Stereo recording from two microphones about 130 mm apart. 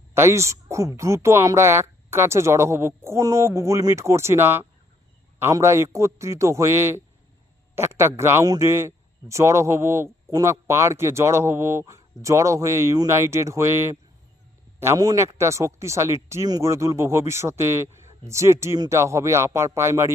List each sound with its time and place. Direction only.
0.1 s speech: 20° right (ahead or behind)